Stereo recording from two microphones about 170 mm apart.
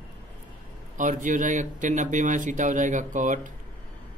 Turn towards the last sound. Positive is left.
turn(degrees=-50)  # may be behind; listen again after turning